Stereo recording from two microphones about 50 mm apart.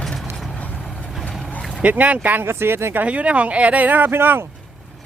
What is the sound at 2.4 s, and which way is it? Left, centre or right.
Speech, right.